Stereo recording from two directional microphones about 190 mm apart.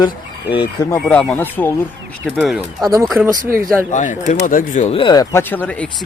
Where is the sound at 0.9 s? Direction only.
10° left (ahead or behind).